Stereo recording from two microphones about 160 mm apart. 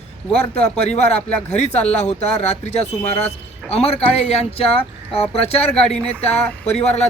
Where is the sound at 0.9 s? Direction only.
40° left (ahead or behind).